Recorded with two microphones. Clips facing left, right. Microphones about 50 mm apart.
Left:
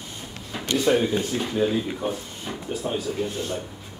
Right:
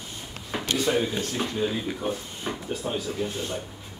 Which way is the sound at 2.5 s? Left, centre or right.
Centre.